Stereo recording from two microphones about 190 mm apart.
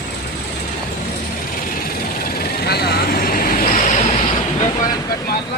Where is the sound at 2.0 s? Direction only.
50° left (ahead or behind); by 4.3 s 35° left (ahead or behind).